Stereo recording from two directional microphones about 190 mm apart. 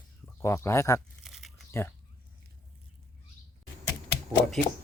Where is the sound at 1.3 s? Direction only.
Centre (ahead or behind).